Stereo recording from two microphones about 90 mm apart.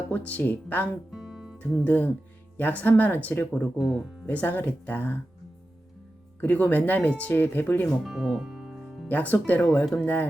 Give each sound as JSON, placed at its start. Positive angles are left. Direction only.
{"t": 0.1, "sound": "speech", "side_deg": 15}
{"t": 1.1, "sound": "music", "side_deg": -5}
{"t": 1.5, "sound": "speech", "side_deg": 15}
{"t": 3.8, "sound": "speech", "side_deg": 0}
{"t": 4.3, "sound": "speech", "side_deg": 20}
{"t": 6.4, "sound": "speech", "side_deg": 20}
{"t": 8.0, "sound": "music", "side_deg": -5}
{"t": 9.0, "sound": "speech", "side_deg": 20}